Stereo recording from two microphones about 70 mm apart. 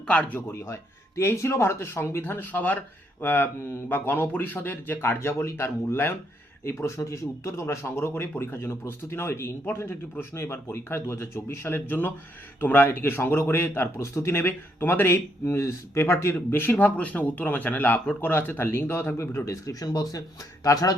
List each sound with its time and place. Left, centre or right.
0.7 s a man's voice: left
6.7 s a man's voice: left
19.5 s speech: left